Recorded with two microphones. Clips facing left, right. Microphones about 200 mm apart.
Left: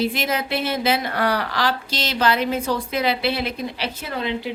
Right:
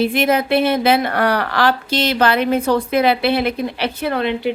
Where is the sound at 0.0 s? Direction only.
60° right (ahead or behind).